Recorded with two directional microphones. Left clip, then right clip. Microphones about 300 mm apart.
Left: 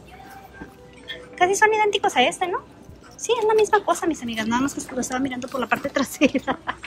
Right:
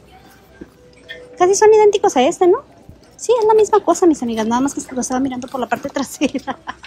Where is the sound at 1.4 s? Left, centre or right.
Centre.